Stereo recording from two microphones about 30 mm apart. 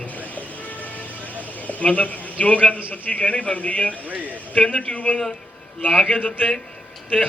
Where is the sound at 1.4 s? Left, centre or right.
Left.